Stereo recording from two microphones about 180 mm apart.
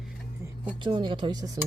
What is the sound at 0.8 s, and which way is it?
Speech, 25° right (ahead or behind).